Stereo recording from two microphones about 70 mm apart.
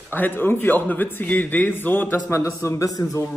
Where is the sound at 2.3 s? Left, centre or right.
Left.